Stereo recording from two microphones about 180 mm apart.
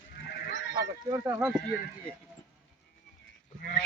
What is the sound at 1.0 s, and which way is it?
Speech, 20° right (ahead or behind).